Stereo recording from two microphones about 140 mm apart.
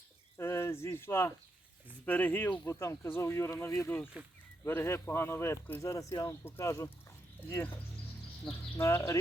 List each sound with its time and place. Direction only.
0.3 s speech: 20° left (ahead or behind)
8.5 s speech: 5° left (ahead or behind)
8.8 s speech: 20° left (ahead or behind)